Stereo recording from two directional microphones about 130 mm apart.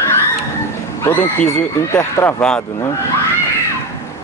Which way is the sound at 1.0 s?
15° left (ahead or behind).